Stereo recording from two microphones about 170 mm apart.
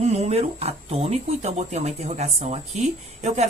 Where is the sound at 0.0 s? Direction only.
40° right (ahead or behind).